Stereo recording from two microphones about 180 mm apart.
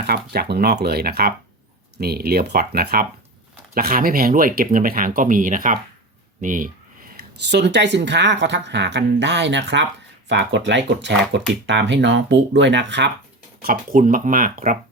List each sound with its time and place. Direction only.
0.0 s speech: 65° right (ahead or behind); by 6.7 s 45° right (ahead or behind)
7.5 s speech: 70° right (ahead or behind)
13.6 s speech: 50° right (ahead or behind)